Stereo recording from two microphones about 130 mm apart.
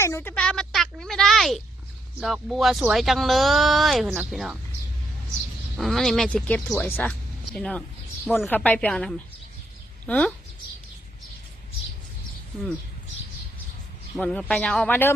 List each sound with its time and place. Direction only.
0.0 s speech: 20° left (ahead or behind)
0.3 s a sound: 5° left (ahead or behind)
2.2 s speech: centre (ahead or behind)
5.7 s speech: centre (ahead or behind)
14.2 s speech: 10° left (ahead or behind)